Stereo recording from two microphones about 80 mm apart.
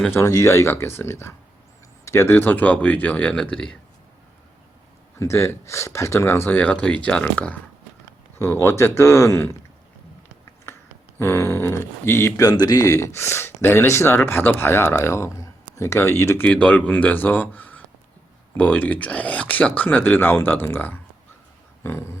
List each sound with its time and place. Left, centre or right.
0.1 s a man's voice: left; by 3.8 s centre
5.2 s a man's voice: left
6.6 s speech: centre
8.6 s a man's voice: left
11.2 s a man's voice: left
12.4 s a man's voice: left
16.4 s speech: centre